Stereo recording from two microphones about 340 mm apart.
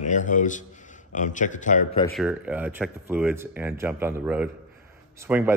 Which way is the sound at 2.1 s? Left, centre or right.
Centre.